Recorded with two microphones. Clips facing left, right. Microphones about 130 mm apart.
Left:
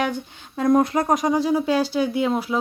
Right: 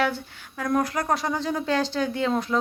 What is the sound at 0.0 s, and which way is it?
Speech, 20° left (ahead or behind).